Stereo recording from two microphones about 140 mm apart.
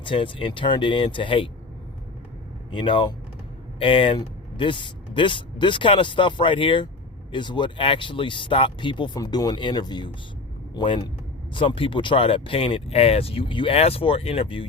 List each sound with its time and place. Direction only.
0.0 s speech: 35° left (ahead or behind)
2.7 s speech: 35° left (ahead or behind)